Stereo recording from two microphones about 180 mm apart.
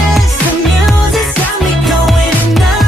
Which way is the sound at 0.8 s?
Centre (ahead or behind).